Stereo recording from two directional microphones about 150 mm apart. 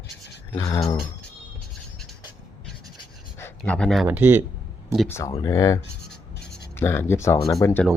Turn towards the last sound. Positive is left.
turn(degrees=20)  # may be behind; listen again after turning